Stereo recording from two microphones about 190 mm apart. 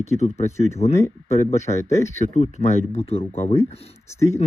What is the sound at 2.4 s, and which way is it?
Speech, 35° left (ahead or behind).